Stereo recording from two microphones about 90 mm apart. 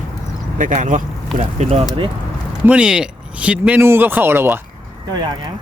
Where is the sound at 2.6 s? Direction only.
10° right (ahead or behind).